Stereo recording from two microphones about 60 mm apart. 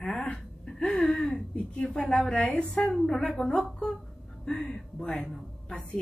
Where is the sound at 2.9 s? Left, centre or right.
Centre.